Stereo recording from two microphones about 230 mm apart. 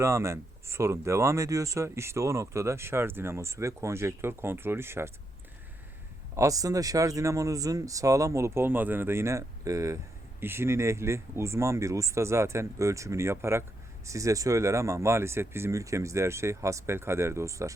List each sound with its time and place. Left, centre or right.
0.0 s speech: centre
6.3 s speech: centre